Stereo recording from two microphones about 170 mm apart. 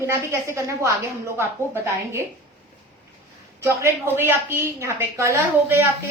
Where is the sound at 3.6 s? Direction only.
15° right (ahead or behind).